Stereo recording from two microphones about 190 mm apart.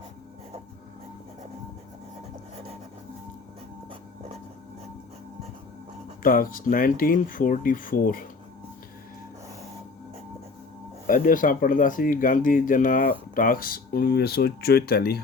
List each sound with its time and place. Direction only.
6.2 s speech: 45° left (ahead or behind)
11.0 s speech: 45° left (ahead or behind)